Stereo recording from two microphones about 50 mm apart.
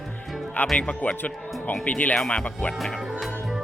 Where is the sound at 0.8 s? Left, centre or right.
Left.